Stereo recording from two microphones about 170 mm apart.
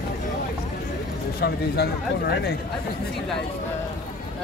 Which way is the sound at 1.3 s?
70° left (ahead or behind).